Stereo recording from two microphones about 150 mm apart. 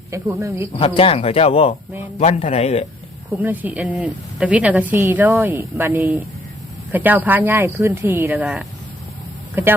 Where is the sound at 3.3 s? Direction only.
10° right (ahead or behind).